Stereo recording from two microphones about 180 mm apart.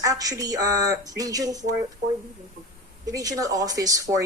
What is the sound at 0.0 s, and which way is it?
Speech, 20° right (ahead or behind).